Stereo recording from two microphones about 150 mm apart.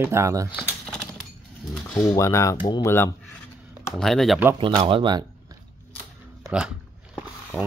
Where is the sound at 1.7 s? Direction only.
Centre (ahead or behind).